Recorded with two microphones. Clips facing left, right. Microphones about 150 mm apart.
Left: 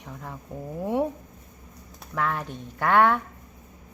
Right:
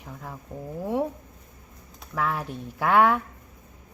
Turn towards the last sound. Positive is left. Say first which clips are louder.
# even
turn(degrees=-5)  # may be behind; listen again after turning